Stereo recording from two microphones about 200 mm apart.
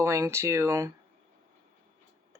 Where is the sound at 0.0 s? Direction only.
15° right (ahead or behind).